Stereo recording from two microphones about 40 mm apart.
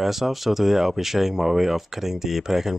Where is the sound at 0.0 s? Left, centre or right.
Centre.